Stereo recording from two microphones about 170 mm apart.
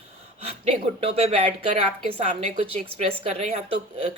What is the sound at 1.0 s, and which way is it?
Speech, 35° right (ahead or behind).